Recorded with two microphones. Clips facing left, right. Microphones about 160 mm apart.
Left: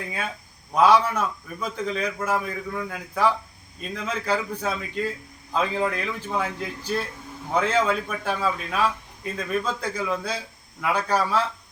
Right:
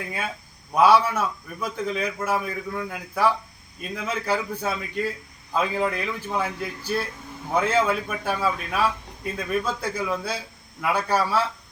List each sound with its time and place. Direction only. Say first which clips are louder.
0.7 s a man's voice: even; 10° right (ahead or behind)